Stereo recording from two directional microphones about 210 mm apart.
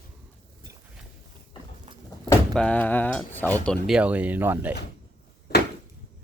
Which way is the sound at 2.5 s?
5° left (ahead or behind).